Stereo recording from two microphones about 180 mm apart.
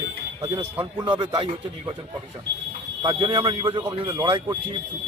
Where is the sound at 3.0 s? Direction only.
25° right (ahead or behind).